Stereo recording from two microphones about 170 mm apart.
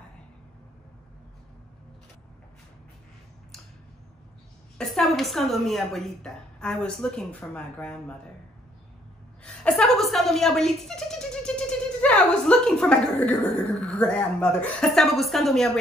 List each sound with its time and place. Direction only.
4.7 s speech: centre (ahead or behind)
9.4 s a woman's voice: 5° left (ahead or behind)
12.0 s a sound: 5° left (ahead or behind)
13.7 s speech: 5° left (ahead or behind)